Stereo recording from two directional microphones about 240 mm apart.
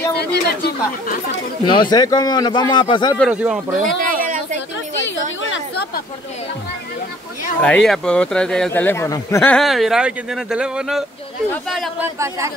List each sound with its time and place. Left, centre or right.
0.2 s speech: left
1.7 s speech: centre
3.2 s a man's voice: centre
3.8 s a sound: right
7.6 s a man's voice: centre
12.2 s speech: centre